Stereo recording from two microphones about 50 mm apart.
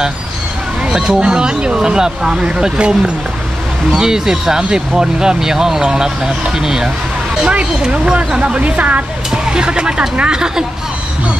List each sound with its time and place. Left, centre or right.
0.8 s speech: centre
7.5 s speech: right